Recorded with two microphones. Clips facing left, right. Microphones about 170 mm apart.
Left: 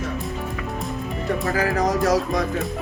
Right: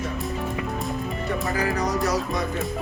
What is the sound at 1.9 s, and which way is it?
Speech, 90° left.